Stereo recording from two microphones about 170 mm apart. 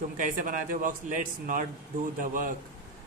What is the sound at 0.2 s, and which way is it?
A man's voice, 50° right (ahead or behind).